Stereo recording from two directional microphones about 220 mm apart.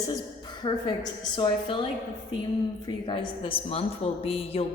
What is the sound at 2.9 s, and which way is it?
A woman's voice, 20° left (ahead or behind).